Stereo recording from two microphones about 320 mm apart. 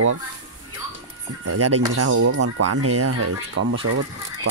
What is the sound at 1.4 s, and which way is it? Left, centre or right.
Speech, right.